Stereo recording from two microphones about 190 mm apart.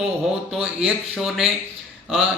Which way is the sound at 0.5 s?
Centre (ahead or behind).